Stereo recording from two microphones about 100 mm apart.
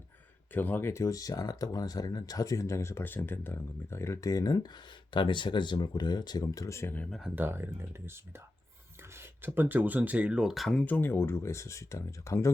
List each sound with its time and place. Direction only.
0.5 s speech: 20° left (ahead or behind)
7.1 s speech: 5° right (ahead or behind)
7.3 s speech: 20° right (ahead or behind); by 10.8 s centre (ahead or behind)
10.8 s speech: 20° left (ahead or behind)